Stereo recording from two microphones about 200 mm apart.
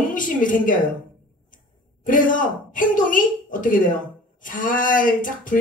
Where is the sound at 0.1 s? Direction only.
40° left (ahead or behind).